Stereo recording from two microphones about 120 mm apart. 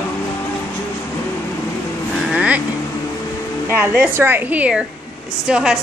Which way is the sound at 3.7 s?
15° right (ahead or behind).